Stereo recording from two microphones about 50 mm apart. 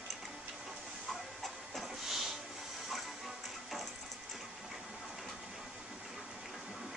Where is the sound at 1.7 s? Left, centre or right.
Centre.